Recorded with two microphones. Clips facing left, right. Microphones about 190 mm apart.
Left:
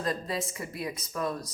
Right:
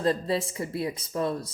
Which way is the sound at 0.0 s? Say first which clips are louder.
Right 6 dB; 30° right (ahead or behind).